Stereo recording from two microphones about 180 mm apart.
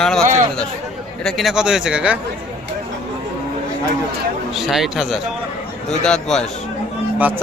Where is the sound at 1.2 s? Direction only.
Centre (ahead or behind).